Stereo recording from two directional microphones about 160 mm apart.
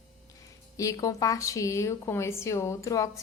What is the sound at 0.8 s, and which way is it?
A woman's voice, 20° left (ahead or behind).